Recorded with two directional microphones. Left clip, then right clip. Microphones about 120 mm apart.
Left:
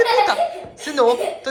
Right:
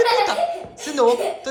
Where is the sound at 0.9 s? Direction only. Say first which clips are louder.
Left 1 dB; 25° right (ahead or behind).